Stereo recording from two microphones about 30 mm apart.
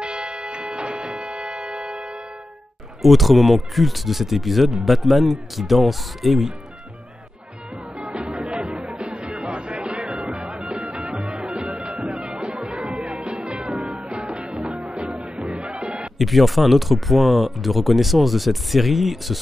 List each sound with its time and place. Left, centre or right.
0.0 s music: right
3.0 s speech: centre
8.0 s music: right
15.1 s music: right
16.2 s speech: centre